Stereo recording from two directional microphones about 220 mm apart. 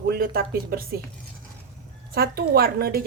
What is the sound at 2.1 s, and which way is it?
Speech, 45° right (ahead or behind).